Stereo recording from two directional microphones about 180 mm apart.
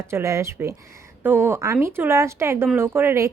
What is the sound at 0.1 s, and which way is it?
A woman's voice, 15° right (ahead or behind).